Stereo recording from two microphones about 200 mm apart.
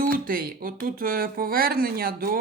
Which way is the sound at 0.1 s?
45° right (ahead or behind).